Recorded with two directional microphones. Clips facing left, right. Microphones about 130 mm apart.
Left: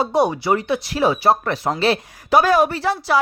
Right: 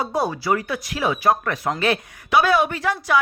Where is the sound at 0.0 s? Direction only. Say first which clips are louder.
Left 5 dB; 25° left (ahead or behind).